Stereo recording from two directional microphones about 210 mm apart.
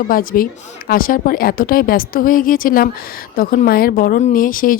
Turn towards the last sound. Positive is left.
turn(degrees=40)  # may be behind; listen again after turning